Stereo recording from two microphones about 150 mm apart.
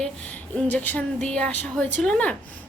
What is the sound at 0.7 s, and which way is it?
A woman's voice, 10° left (ahead or behind).